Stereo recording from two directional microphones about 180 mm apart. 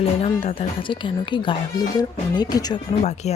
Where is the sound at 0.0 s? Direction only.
35° left (ahead or behind).